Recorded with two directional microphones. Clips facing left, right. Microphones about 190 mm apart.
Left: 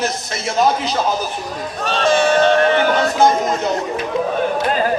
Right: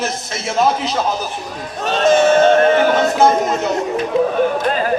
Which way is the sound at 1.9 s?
45° right (ahead or behind).